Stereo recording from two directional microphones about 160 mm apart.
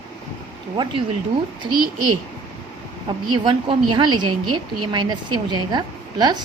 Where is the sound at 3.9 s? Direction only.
30° right (ahead or behind).